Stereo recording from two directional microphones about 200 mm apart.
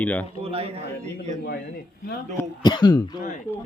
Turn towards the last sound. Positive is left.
turn(degrees=15)  # may be behind; listen again after turning